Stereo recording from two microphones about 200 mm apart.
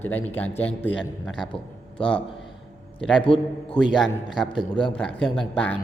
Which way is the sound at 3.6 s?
5° left (ahead or behind).